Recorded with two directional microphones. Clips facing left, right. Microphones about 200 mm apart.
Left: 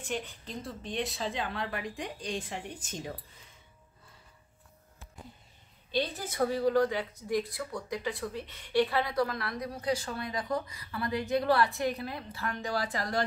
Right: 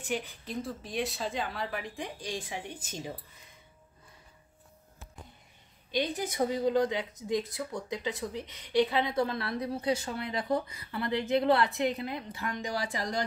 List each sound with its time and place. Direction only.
0.1 s a woman's voice: 10° right (ahead or behind)
5.9 s a woman's voice: 15° right (ahead or behind)